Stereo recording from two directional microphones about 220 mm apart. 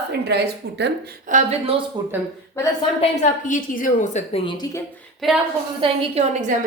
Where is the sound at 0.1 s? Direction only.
50° right (ahead or behind).